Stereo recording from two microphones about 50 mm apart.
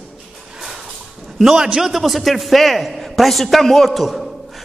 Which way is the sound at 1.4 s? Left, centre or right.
Centre.